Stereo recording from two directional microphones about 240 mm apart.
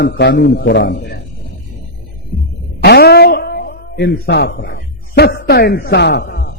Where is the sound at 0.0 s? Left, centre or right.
Left.